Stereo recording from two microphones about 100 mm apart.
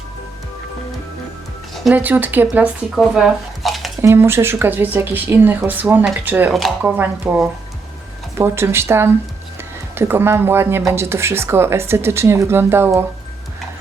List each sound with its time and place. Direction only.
1.9 s speech: 15° right (ahead or behind); by 3.9 s centre (ahead or behind)
4.0 s speech: 25° right (ahead or behind)
8.4 s speech: 25° right (ahead or behind)